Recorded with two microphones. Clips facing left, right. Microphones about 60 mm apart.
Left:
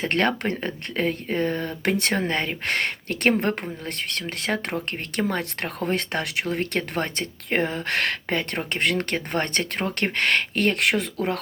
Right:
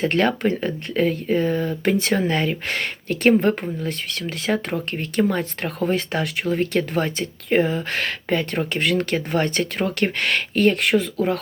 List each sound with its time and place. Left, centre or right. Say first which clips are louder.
0.0 s speech: right 3 dB; left